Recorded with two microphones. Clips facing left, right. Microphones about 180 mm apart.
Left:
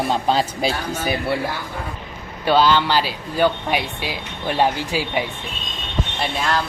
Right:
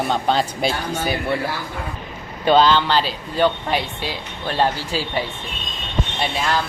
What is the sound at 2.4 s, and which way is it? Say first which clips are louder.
Speech: right 1 dB; 10° left (ahead or behind).